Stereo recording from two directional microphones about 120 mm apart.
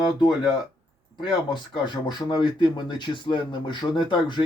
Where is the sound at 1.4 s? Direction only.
40° left (ahead or behind).